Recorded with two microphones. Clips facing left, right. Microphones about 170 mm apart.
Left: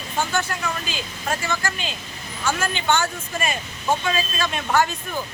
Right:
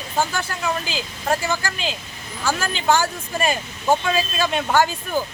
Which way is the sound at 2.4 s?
35° right (ahead or behind).